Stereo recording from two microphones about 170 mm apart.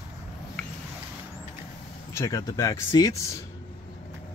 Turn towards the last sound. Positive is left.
turn(degrees=20)  # may be behind; listen again after turning